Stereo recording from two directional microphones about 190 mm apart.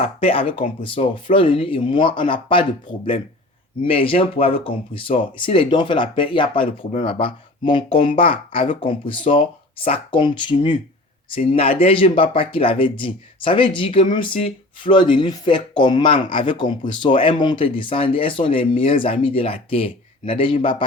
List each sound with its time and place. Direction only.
0.0 s speech: 30° left (ahead or behind)